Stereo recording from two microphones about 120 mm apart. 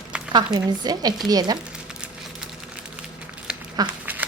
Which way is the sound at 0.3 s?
35° right (ahead or behind).